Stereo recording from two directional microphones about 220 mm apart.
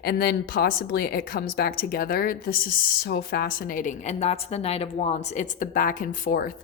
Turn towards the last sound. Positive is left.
turn(degrees=40)  # may be behind; listen again after turning